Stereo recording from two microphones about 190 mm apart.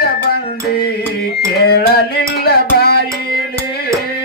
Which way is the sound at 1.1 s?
55° left (ahead or behind).